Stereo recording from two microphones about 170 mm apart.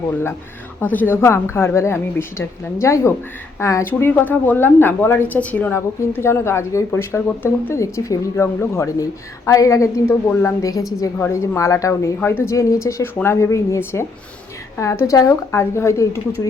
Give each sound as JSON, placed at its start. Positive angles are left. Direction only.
{"t": 0.8, "sound": "a woman's voice", "side_deg": 10}